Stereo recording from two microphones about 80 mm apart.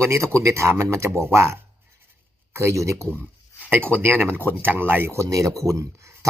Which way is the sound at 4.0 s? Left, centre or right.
Right.